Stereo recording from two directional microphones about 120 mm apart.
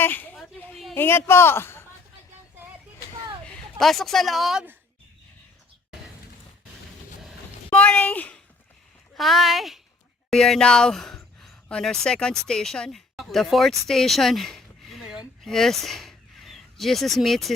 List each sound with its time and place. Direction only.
0.0 s a sound: 15° left (ahead or behind)
0.3 s a sound: centre (ahead or behind)
0.9 s a man's voice: 20° left (ahead or behind)
3.8 s speech: centre (ahead or behind)
7.7 s speech: 15° left (ahead or behind)
9.1 s speech: centre (ahead or behind)